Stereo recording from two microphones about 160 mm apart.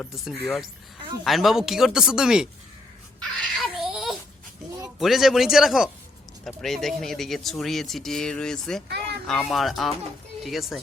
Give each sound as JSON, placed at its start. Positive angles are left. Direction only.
{"t": 0.4, "sound": "speech", "side_deg": 0}
{"t": 3.2, "sound": "babbling", "side_deg": 0}
{"t": 4.9, "sound": "speech", "side_deg": 0}